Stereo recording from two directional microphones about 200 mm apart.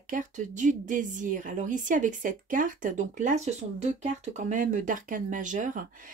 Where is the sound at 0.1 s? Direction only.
40° right (ahead or behind).